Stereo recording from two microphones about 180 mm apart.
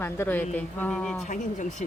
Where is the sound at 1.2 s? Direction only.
45° left (ahead or behind).